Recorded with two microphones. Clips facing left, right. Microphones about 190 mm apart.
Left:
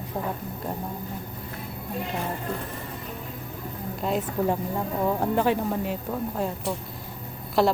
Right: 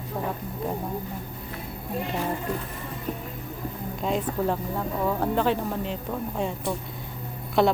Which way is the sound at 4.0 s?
Centre (ahead or behind).